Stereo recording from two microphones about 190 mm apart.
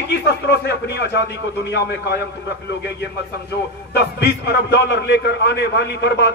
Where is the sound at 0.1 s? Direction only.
65° left (ahead or behind).